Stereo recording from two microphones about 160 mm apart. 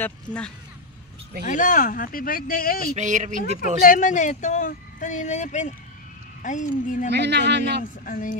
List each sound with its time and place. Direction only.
0.0 s speech: 5° left (ahead or behind)
1.4 s speech: 55° left (ahead or behind)
3.0 s speech: 50° right (ahead or behind)
3.8 s speech: 55° left (ahead or behind)
7.1 s a man's voice: 90° right
7.8 s speech: 60° left (ahead or behind)